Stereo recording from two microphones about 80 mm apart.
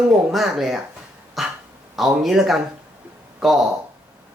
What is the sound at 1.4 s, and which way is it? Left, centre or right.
Dog, centre.